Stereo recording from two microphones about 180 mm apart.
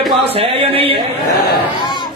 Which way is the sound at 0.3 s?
30° right (ahead or behind).